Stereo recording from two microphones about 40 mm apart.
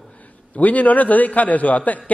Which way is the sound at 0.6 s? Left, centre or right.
Left.